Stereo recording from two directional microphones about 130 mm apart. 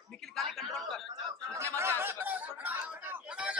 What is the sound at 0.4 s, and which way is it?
Speech, centre (ahead or behind).